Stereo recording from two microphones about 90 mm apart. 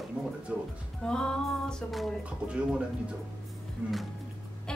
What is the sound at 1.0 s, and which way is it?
Speech, 10° left (ahead or behind).